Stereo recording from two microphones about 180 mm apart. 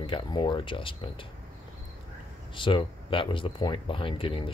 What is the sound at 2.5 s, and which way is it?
Speech, 30° left (ahead or behind).